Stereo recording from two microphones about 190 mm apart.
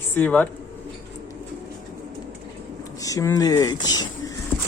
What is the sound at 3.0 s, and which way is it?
Speech, 20° left (ahead or behind).